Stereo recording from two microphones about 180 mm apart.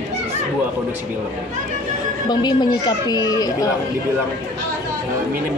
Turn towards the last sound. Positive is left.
turn(degrees=20)  # may be behind; listen again after turning